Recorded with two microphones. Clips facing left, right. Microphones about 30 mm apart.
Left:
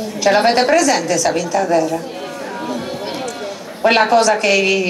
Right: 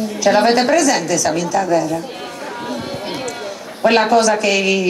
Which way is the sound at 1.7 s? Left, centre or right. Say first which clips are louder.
Left 2 dB; centre.